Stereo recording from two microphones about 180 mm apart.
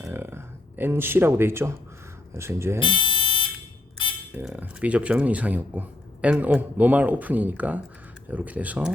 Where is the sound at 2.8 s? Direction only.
25° left (ahead or behind).